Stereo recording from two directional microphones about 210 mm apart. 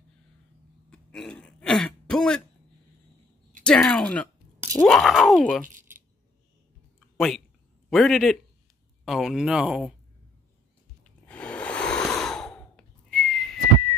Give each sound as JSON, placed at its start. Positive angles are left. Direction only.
{"t": 0.8, "sound": "throat clearing", "side_deg": 5}
{"t": 3.6, "sound": "a sound", "side_deg": 5}
{"t": 4.7, "sound": "groan", "side_deg": 0}
{"t": 7.2, "sound": "speech", "side_deg": 0}
{"t": 11.1, "sound": "sigh", "side_deg": 5}